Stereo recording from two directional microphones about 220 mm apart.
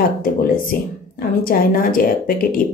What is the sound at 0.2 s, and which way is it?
A woman's voice, 40° left (ahead or behind).